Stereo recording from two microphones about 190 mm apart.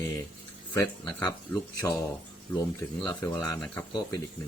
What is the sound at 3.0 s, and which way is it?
Speech, 20° left (ahead or behind).